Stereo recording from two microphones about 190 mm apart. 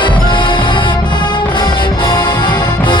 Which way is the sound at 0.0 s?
25° left (ahead or behind).